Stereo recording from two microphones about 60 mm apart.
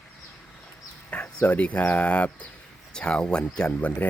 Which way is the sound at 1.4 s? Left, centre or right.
Left.